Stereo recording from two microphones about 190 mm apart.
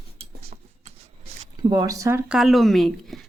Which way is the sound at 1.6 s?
20° right (ahead or behind).